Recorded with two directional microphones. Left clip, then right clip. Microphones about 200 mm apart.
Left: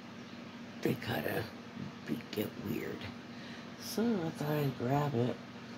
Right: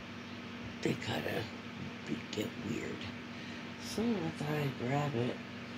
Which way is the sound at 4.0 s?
35° left (ahead or behind).